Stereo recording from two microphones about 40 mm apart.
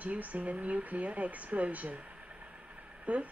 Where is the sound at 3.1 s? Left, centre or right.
Right.